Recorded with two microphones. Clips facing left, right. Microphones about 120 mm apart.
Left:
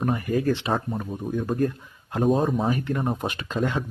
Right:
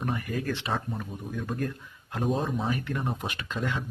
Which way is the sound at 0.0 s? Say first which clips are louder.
Left 7 dB; 40° left (ahead or behind).